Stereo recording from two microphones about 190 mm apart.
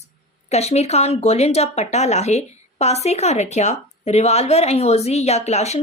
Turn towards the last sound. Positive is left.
turn(degrees=35)  # may be behind; listen again after turning